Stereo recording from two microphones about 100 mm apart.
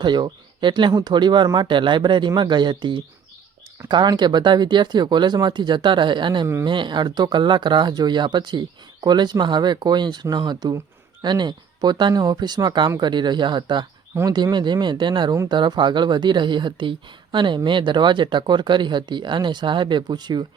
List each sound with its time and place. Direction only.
0.0 s speech: 50° right (ahead or behind)